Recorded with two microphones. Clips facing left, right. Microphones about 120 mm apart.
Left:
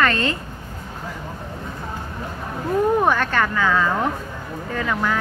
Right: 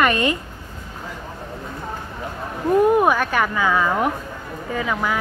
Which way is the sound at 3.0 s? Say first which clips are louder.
Right 1 dB; 10° right (ahead or behind).